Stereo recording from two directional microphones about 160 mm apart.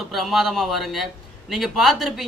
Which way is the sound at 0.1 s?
Centre (ahead or behind).